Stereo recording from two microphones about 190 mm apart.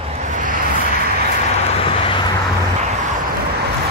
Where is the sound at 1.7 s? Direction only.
30° left (ahead or behind).